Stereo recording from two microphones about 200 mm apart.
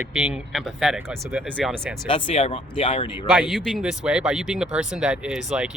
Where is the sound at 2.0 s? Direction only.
25° left (ahead or behind).